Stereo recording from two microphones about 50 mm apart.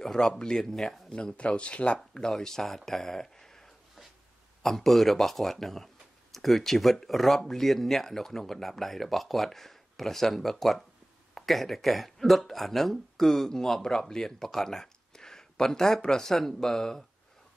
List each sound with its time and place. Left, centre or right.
0.0 s speech: centre
1.1 s speech: left
2.3 s speech: centre
4.6 s speech: centre